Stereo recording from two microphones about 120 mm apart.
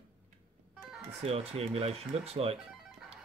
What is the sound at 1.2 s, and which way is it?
Speech, 55° right (ahead or behind).